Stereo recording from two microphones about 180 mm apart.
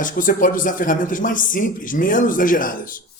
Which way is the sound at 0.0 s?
50° left (ahead or behind).